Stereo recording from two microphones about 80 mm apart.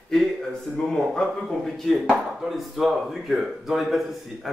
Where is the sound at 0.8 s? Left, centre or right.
Centre.